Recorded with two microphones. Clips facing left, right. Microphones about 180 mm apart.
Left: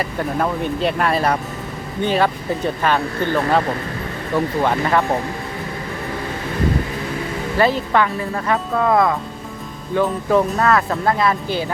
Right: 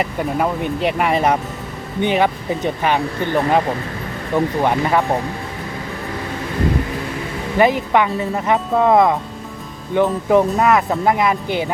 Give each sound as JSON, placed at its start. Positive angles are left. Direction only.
{"t": 0.0, "sound": "speech", "side_deg": -15}
{"t": 7.6, "sound": "speech", "side_deg": -15}